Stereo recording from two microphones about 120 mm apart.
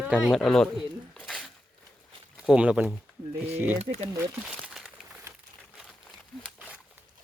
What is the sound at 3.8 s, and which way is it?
Speech, 60° right (ahead or behind).